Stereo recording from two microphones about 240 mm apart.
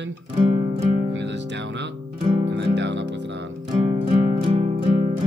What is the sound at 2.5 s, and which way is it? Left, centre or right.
Speech, right.